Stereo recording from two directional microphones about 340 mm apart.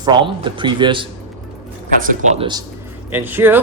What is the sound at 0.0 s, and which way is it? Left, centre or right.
Speech, centre.